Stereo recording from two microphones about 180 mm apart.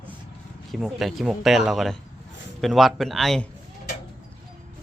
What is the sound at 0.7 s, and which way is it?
A man's voice, centre (ahead or behind).